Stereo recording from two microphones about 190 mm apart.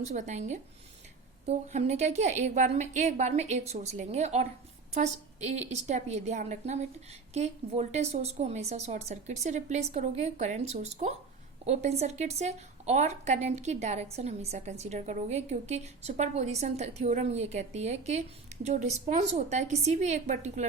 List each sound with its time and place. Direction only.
0.0 s a woman's voice: 40° right (ahead or behind)